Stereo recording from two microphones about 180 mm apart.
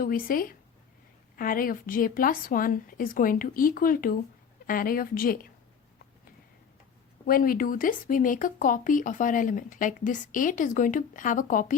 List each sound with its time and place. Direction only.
0.0 s speech: 50° left (ahead or behind)
7.3 s speech: 50° left (ahead or behind)